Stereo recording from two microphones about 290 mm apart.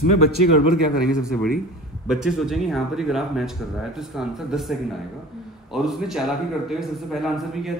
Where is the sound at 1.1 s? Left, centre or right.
Centre.